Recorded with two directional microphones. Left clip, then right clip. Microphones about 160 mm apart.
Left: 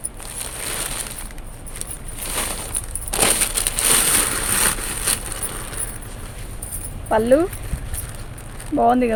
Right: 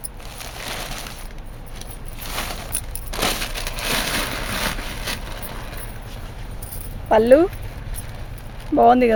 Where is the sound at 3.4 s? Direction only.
40° left (ahead or behind).